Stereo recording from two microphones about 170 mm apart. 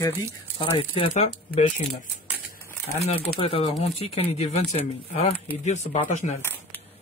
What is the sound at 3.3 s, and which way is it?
Speech, 35° left (ahead or behind).